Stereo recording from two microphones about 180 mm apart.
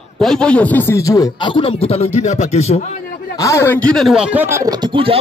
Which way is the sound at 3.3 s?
15° left (ahead or behind).